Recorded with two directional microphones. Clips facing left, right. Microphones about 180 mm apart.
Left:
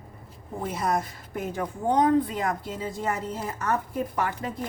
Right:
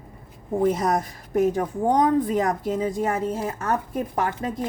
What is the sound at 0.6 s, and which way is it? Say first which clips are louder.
A woman's voice: right 5 dB; 45° right (ahead or behind).